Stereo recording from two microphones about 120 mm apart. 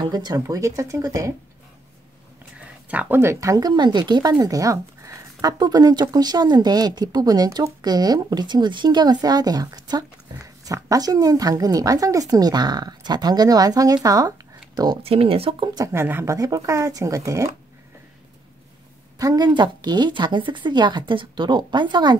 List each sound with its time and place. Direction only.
0.1 s speech: 35° right (ahead or behind)
2.9 s speech: 15° right (ahead or behind)
15.0 s speech: 55° right (ahead or behind)
15.7 s speech: 25° right (ahead or behind)
19.1 s speech: 30° right (ahead or behind)